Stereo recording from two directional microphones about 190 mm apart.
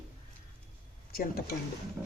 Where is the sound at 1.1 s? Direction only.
50° left (ahead or behind).